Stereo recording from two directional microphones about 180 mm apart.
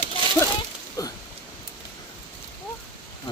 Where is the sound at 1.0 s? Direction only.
20° left (ahead or behind).